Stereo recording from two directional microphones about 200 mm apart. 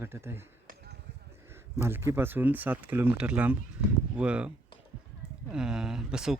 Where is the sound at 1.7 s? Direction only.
10° right (ahead or behind).